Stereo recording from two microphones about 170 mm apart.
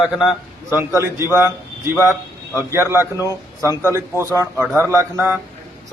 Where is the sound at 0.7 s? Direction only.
15° right (ahead or behind).